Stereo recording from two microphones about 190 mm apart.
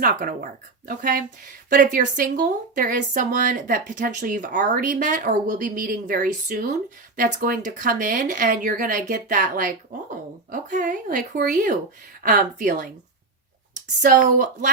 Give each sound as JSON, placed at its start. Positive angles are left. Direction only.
{"t": 0.0, "sound": "speech", "side_deg": -50}